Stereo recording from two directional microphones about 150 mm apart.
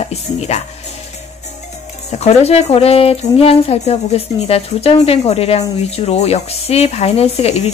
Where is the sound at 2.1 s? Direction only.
45° left (ahead or behind).